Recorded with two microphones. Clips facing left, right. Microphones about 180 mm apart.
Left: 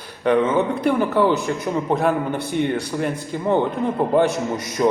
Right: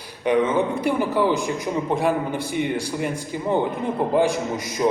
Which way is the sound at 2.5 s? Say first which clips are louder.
Left 3 dB; 10° right (ahead or behind).